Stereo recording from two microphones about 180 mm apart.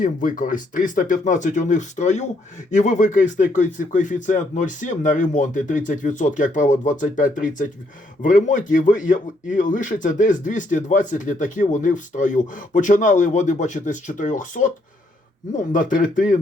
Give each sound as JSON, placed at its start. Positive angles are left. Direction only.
{"t": 0.0, "sound": "a man's voice", "side_deg": 50}